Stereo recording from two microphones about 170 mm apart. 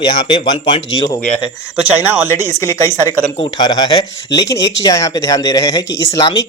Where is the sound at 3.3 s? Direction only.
25° left (ahead or behind).